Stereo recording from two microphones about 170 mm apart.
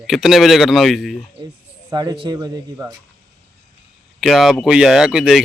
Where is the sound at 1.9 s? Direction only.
25° right (ahead or behind).